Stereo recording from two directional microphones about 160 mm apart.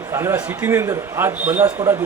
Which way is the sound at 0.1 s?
15° right (ahead or behind).